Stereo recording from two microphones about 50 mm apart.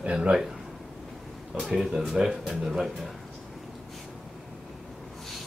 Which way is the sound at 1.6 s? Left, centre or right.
Centre.